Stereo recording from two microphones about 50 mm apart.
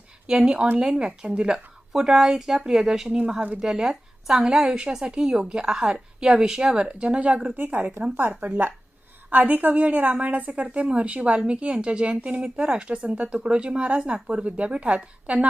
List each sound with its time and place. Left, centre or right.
0.3 s a woman's voice: centre
1.9 s a woman's voice: centre
3.1 s a woman's voice: right
3.6 s a woman's voice: centre; by 7.3 s right
7.5 s a woman's voice: right